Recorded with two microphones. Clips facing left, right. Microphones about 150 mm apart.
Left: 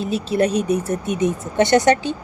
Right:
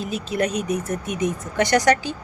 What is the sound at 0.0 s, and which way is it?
A woman's voice, 30° left (ahead or behind).